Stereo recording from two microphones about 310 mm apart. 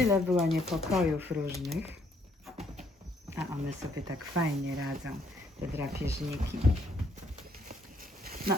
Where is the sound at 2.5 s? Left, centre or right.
Centre.